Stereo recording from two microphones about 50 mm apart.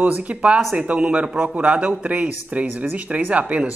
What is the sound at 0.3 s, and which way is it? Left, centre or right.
Speech, right.